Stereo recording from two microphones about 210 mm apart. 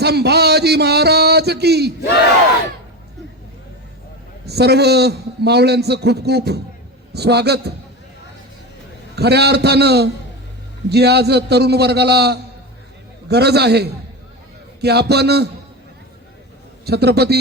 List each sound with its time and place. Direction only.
0.0 s a sound: 50° right (ahead or behind)
4.4 s a man's voice: 50° right (ahead or behind)
9.1 s a man's voice: 50° right (ahead or behind)
16.8 s a man's voice: 50° right (ahead or behind)